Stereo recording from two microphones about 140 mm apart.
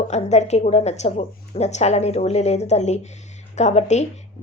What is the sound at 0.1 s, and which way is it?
A woman's voice, 50° left (ahead or behind).